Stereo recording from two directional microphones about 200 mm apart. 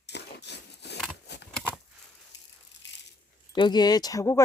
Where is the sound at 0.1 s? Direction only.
60° left (ahead or behind).